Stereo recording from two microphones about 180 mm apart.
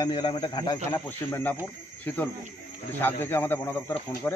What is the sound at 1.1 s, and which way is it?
Speech, 10° left (ahead or behind).